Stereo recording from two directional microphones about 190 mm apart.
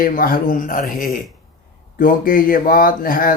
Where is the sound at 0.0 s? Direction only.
50° left (ahead or behind).